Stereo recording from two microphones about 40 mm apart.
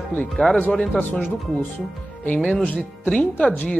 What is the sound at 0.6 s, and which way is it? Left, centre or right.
Speech, left.